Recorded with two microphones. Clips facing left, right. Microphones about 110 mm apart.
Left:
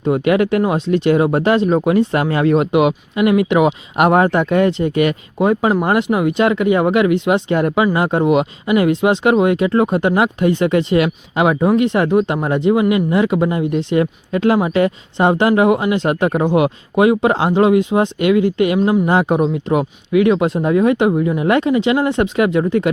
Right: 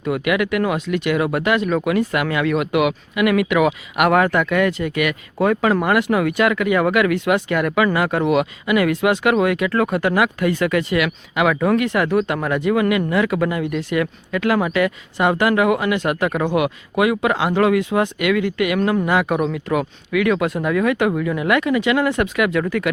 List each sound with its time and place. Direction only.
0.0 s speech: 30° left (ahead or behind)